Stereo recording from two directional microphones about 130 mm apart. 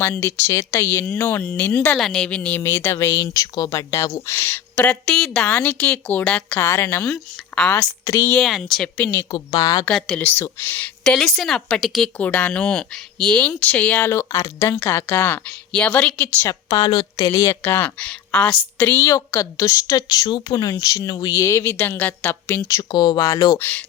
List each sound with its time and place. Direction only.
0.0 s a woman's voice: 20° left (ahead or behind)
2.6 s a woman's voice: 20° left (ahead or behind)
7.8 s a woman's voice: 25° left (ahead or behind)
8.4 s a woman's voice: centre (ahead or behind)
9.5 s a woman's voice: 35° left (ahead or behind)
9.8 s a woman's voice: 10° left (ahead or behind)
12.1 s speech: 10° left (ahead or behind)
16.5 s a woman's voice: 30° left (ahead or behind); by 19.0 s 15° left (ahead or behind)
19.0 s a woman's voice: 25° left (ahead or behind)
23.6 s speech: 15° left (ahead or behind)